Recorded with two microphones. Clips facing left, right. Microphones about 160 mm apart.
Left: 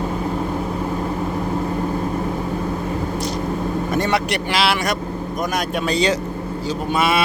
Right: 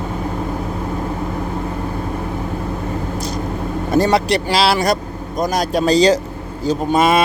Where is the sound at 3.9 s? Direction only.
35° right (ahead or behind).